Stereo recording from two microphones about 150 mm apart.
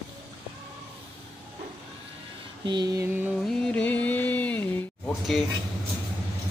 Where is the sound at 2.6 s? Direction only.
30° right (ahead or behind).